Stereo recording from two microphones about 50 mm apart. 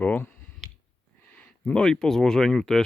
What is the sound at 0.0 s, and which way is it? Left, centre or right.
Speech, left.